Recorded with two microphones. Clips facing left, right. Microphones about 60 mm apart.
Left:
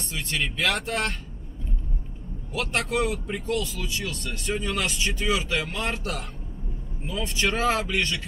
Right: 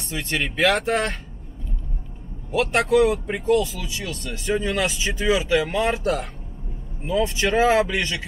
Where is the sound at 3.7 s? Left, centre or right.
Centre.